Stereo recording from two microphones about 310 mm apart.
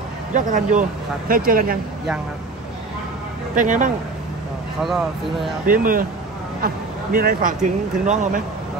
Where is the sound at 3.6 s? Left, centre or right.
Right.